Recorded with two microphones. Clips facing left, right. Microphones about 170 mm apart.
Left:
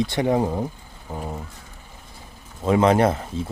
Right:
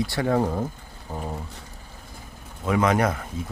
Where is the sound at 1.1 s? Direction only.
Centre (ahead or behind).